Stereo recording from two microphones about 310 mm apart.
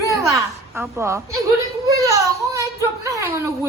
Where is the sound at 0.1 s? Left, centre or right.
Centre.